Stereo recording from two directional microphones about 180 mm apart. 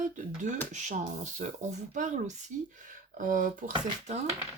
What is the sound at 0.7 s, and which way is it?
Speech, 45° right (ahead or behind).